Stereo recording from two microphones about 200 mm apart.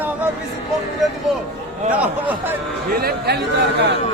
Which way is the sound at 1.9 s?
5° right (ahead or behind).